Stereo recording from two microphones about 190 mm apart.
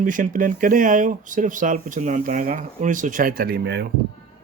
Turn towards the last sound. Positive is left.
turn(degrees=-60)  # may be behind; listen again after turning